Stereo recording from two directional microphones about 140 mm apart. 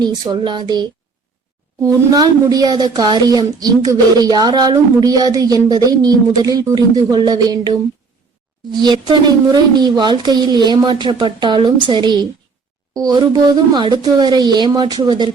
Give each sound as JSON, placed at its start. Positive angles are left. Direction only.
{"t": 0.0, "sound": "a woman's voice", "side_deg": -30}
{"t": 8.8, "sound": "a woman's voice", "side_deg": -30}